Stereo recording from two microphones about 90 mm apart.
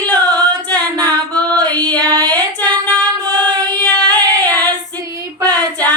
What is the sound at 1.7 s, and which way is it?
Child singing, 15° left (ahead or behind).